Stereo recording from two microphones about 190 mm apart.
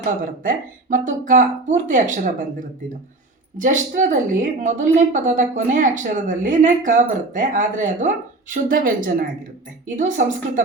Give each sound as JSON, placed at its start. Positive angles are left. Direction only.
{"t": 0.0, "sound": "a woman's voice", "side_deg": -45}